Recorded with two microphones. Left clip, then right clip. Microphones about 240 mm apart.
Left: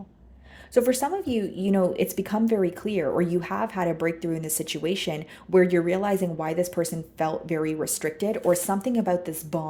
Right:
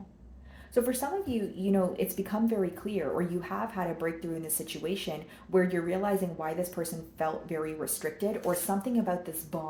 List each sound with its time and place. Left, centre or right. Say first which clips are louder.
0.7 s a woman's voice: left 7 dB; left